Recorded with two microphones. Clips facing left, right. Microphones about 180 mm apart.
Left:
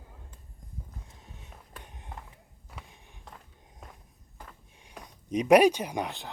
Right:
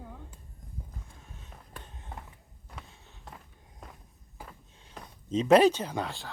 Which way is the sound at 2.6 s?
10° left (ahead or behind).